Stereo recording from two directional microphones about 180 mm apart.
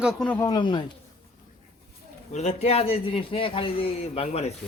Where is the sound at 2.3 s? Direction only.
35° left (ahead or behind).